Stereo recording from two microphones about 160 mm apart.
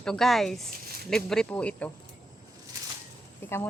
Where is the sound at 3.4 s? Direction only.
15° left (ahead or behind).